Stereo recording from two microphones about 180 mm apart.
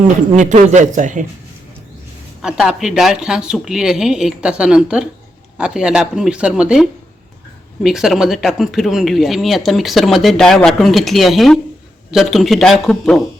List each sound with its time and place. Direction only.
0.3 s a man's voice: 40° right (ahead or behind)
2.4 s speech: 5° right (ahead or behind)